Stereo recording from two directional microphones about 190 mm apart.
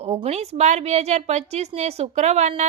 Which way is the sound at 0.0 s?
35° right (ahead or behind).